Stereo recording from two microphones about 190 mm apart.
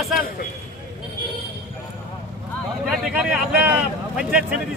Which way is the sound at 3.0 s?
5° right (ahead or behind).